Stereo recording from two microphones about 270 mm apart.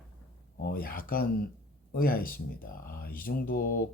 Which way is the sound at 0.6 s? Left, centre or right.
Left.